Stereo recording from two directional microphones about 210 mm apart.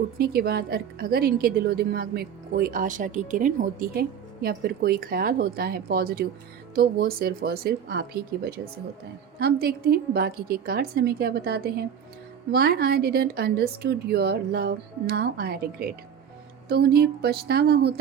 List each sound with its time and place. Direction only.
0.2 s a woman's voice: 50° right (ahead or behind)